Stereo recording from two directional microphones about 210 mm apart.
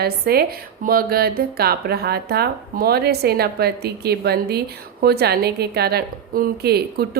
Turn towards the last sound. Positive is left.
turn(degrees=-50)  # may be behind; listen again after turning